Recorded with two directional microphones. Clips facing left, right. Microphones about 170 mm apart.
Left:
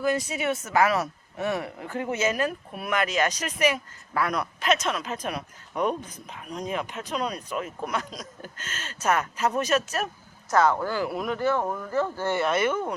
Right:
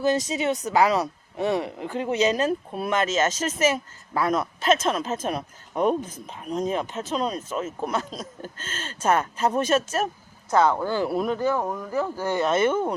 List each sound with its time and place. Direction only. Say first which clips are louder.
0.3 s speech: right 3 dB; 20° right (ahead or behind)
10.7 s speech: right 1 dB; 10° right (ahead or behind)
10.9 s speech: right 4 dB; 30° right (ahead or behind)
11.3 s speech: right 1 dB; 15° right (ahead or behind)